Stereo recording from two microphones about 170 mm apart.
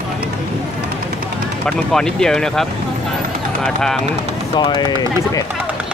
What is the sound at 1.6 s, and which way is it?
Speech, 5° left (ahead or behind).